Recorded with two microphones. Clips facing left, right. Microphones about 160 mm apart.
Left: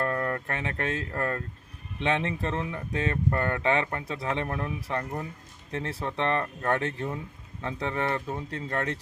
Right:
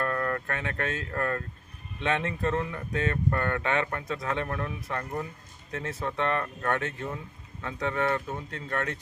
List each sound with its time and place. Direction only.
0.0 s speech: 25° left (ahead or behind)